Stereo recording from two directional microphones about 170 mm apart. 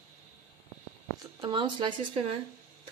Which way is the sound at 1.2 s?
30° right (ahead or behind).